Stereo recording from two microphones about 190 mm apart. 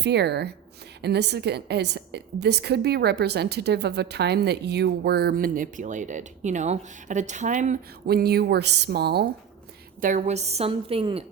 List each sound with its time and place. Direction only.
0.0 s a woman's voice: 60° right (ahead or behind); by 8.1 s 40° right (ahead or behind)
8.1 s a woman's voice: 55° right (ahead or behind)
10.0 s a woman's voice: 40° right (ahead or behind)